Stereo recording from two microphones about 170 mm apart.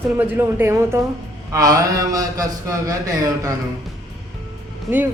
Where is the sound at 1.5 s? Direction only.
20° right (ahead or behind).